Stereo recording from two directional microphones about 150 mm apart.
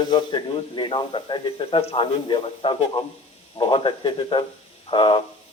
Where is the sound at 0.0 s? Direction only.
30° left (ahead or behind).